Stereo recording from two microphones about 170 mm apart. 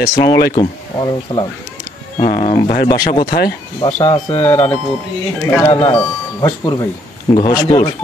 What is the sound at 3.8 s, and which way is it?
Speech, 30° left (ahead or behind).